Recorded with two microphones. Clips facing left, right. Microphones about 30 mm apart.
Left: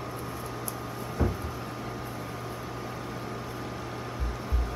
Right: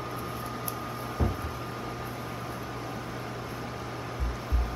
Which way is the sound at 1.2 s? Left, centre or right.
Right.